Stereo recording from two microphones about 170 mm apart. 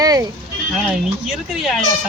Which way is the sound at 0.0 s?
20° right (ahead or behind).